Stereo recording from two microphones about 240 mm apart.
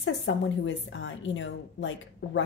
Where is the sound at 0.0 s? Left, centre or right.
Left.